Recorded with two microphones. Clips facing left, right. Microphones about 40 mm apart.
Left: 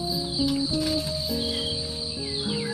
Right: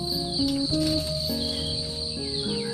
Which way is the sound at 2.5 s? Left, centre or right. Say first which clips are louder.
Left 1 dB; left.